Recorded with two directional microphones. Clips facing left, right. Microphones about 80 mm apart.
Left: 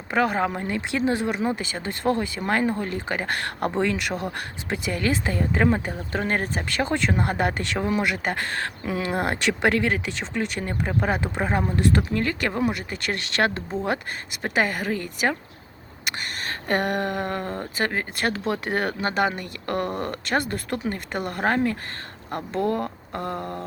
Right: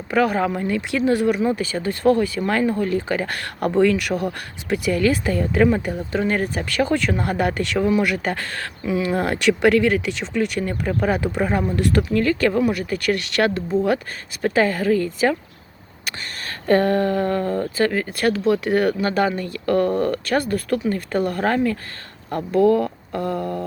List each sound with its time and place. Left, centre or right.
0.1 s speech: left